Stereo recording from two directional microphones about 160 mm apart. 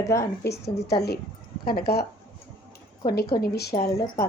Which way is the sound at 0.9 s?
85° left.